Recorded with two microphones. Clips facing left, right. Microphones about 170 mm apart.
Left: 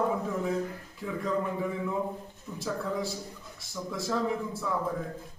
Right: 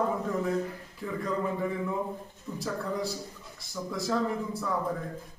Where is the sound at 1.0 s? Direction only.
Centre (ahead or behind).